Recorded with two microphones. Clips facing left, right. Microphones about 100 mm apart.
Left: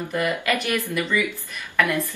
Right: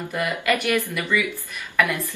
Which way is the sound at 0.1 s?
5° right (ahead or behind).